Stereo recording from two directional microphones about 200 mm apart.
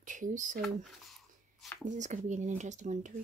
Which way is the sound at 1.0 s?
Centre (ahead or behind).